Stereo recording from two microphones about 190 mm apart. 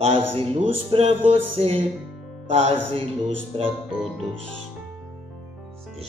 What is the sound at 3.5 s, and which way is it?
Speech, 30° right (ahead or behind).